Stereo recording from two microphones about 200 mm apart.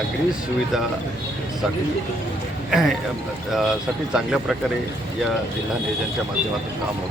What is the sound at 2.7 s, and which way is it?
Speech, centre (ahead or behind).